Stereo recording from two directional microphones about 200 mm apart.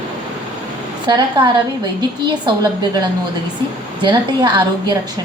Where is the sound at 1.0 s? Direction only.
20° right (ahead or behind).